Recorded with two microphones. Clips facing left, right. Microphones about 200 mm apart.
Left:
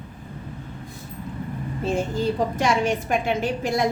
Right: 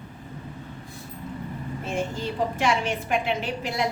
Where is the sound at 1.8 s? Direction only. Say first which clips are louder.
Left 6 dB; 35° left (ahead or behind).